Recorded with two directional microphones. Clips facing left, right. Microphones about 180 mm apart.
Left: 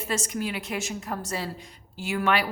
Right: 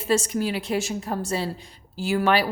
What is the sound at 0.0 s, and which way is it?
A woman's voice, 30° right (ahead or behind).